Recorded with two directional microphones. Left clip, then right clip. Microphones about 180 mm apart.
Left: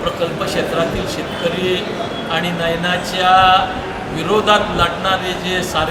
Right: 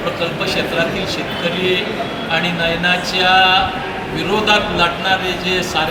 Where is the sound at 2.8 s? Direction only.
20° left (ahead or behind).